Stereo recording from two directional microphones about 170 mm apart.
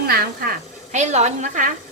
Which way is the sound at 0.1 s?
60° right (ahead or behind).